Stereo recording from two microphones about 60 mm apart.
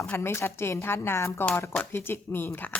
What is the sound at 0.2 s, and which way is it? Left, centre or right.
A woman's voice, left.